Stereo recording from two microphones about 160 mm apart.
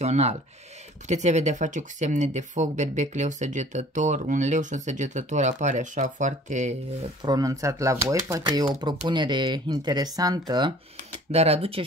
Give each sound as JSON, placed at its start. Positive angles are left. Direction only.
{"t": 0.0, "sound": "speech", "side_deg": -45}
{"t": 7.2, "sound": "speech", "side_deg": -20}
{"t": 11.3, "sound": "speech", "side_deg": -40}